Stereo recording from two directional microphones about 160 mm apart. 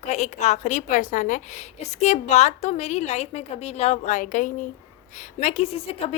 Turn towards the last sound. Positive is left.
turn(degrees=40)  # may be behind; listen again after turning